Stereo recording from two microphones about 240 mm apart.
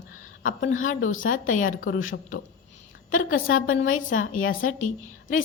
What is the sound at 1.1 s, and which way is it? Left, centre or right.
A woman's voice, left.